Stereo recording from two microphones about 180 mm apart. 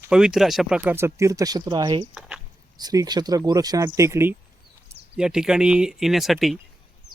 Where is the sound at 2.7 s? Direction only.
20° right (ahead or behind); by 6.6 s centre (ahead or behind).